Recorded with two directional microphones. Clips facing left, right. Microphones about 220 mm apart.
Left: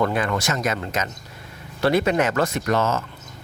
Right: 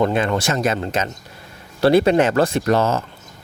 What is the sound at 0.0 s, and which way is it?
Speech, 25° right (ahead or behind).